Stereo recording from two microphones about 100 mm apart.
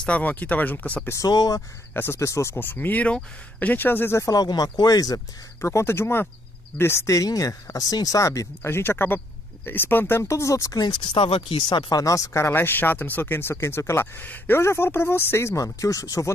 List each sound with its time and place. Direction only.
0.0 s speech: 15° left (ahead or behind)
1.1 s speech: 40° left (ahead or behind)
2.0 s speech: 25° left (ahead or behind)
4.3 s speech: 40° left (ahead or behind)
10.9 s speech: 60° left (ahead or behind)
11.7 s speech: 35° left (ahead or behind)